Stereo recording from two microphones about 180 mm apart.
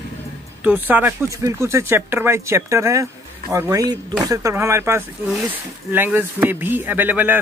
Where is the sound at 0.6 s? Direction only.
10° right (ahead or behind).